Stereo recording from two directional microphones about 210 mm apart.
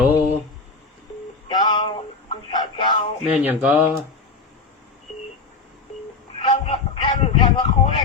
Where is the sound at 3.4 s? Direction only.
10° right (ahead or behind).